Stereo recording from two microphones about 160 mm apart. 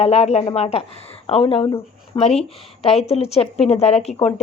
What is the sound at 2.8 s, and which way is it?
A woman's voice, 40° left (ahead or behind).